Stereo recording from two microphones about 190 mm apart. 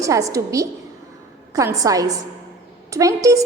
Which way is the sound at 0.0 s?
15° right (ahead or behind).